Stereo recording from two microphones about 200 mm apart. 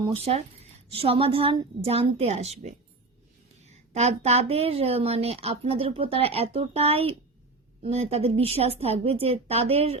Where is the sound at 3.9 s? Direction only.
35° right (ahead or behind).